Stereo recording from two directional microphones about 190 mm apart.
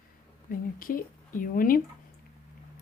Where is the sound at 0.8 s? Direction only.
45° left (ahead or behind).